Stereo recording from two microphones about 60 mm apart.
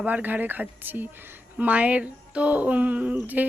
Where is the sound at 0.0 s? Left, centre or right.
Right.